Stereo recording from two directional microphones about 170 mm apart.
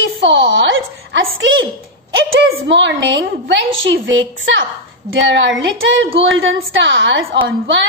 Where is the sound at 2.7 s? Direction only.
90° right.